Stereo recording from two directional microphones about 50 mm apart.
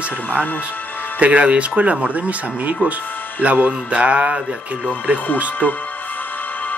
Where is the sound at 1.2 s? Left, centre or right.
Right.